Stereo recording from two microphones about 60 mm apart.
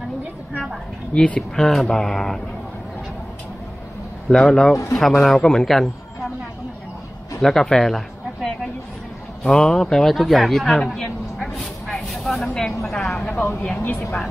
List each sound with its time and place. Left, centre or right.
1.1 s speech: centre
4.3 s speech: centre
7.4 s speech: centre
9.4 s speech: centre
11.5 s vehicle: centre
13.3 s speech: left